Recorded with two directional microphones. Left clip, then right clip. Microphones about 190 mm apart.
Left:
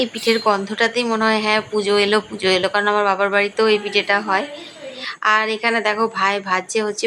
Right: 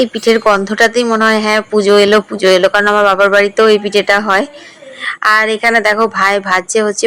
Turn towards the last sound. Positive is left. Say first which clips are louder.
# right 8 dB
turn(degrees=-30)  # may be behind; listen again after turning